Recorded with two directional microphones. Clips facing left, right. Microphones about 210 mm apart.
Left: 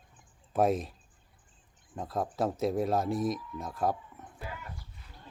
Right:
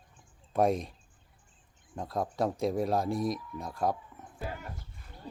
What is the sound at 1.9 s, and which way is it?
Speech, centre (ahead or behind).